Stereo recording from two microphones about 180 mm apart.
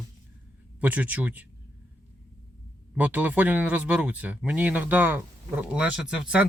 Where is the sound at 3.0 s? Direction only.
10° right (ahead or behind).